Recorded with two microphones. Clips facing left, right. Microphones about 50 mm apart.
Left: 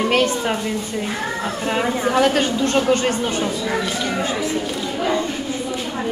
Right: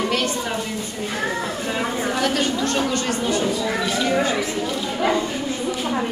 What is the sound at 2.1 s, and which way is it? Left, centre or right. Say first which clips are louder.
Speech: left 5 dB; left.